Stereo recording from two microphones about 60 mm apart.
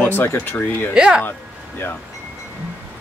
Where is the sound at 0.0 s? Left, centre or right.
Left.